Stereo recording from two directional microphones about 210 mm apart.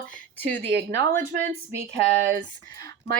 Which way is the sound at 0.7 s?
50° right (ahead or behind).